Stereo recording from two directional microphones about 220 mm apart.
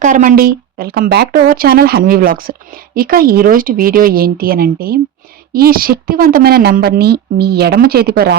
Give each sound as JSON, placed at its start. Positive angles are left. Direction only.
{"t": 0.0, "sound": "a woman's voice", "side_deg": -35}